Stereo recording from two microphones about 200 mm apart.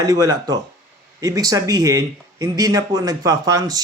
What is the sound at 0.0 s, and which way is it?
Speech, 20° right (ahead or behind).